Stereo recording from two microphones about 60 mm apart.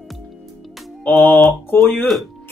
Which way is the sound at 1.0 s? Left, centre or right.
Left.